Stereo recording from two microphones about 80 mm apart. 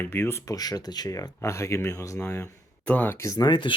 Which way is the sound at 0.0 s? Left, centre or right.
Left.